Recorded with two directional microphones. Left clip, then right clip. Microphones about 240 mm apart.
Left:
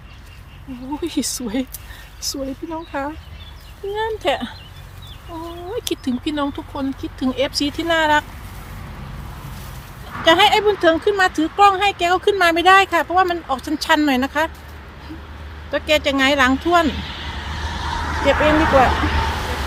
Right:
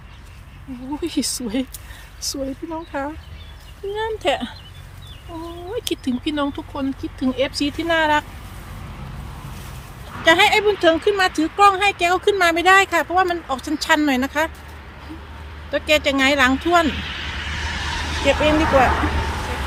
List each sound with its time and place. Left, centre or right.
1.0 s speech: centre
5.7 s speech: centre
10.2 s speech: centre
15.7 s speech: centre
16.6 s vehicle: centre
18.9 s a sound: left